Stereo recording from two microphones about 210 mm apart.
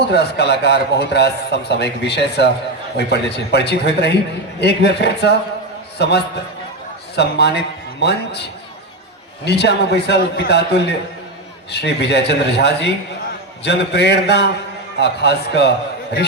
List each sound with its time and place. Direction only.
0.0 s a man's voice: 50° left (ahead or behind)